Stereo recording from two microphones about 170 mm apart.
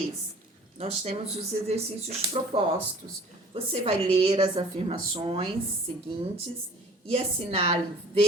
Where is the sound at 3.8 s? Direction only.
35° right (ahead or behind).